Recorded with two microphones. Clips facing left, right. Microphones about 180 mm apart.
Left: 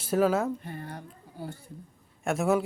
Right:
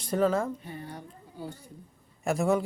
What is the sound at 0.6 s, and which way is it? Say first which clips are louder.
Speech: left 1 dB; 55° left (ahead or behind).